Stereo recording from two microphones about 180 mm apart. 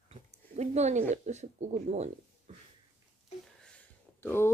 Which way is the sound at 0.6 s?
40° right (ahead or behind).